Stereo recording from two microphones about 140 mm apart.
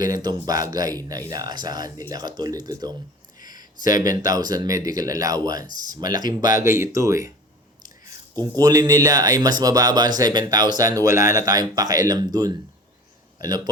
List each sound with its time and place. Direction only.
0.0 s speech: 30° right (ahead or behind)